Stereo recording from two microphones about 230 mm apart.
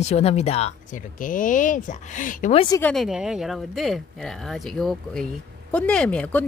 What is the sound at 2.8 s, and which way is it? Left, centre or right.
Speech, centre.